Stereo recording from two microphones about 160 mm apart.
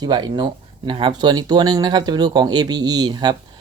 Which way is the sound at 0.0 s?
25° right (ahead or behind).